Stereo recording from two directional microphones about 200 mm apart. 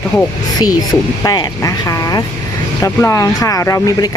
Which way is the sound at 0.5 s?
20° left (ahead or behind).